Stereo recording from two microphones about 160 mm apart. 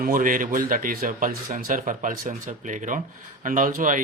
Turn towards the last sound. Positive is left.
turn(degrees=-55)  # may be behind; listen again after turning